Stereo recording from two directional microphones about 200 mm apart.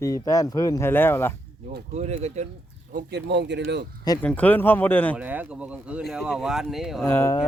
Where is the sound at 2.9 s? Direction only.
55° right (ahead or behind).